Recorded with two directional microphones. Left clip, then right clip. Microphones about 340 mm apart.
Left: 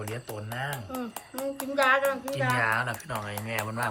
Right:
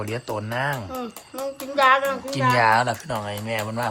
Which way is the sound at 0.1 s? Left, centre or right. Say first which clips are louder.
Right 9 dB; centre.